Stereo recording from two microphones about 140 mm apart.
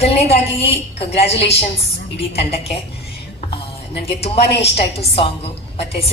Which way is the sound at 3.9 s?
45° left (ahead or behind).